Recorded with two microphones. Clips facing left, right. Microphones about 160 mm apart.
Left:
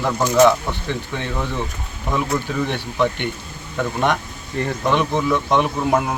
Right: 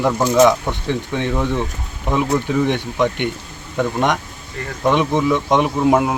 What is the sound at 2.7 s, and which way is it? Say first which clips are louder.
Speech: right 2 dB; 15° right (ahead or behind).